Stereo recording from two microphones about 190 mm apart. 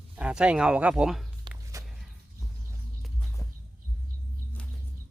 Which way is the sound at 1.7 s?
15° right (ahead or behind).